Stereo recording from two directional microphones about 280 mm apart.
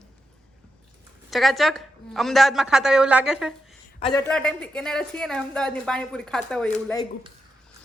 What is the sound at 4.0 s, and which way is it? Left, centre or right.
Speech, centre.